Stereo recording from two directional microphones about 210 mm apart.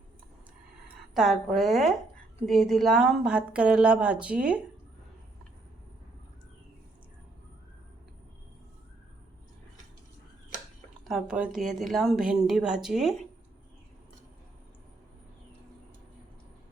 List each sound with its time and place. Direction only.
1.1 s speech: centre (ahead or behind)
11.1 s speech: 5° right (ahead or behind)